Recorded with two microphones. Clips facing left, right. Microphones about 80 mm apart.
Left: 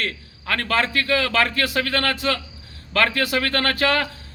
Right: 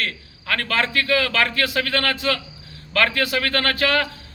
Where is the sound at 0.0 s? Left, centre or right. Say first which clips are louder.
Even; left.